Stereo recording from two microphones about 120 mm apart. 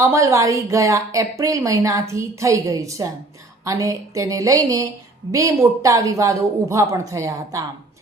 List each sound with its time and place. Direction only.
0.0 s a woman's voice: 25° right (ahead or behind)